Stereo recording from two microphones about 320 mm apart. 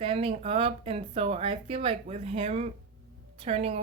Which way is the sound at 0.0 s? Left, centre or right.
Centre.